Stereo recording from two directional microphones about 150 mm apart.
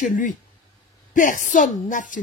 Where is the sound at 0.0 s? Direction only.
60° left (ahead or behind).